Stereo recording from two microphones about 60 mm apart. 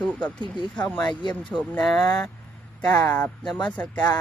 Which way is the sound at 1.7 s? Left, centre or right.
Centre.